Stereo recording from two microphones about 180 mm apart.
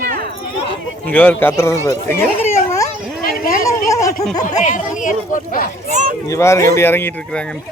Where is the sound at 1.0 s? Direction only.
10° left (ahead or behind).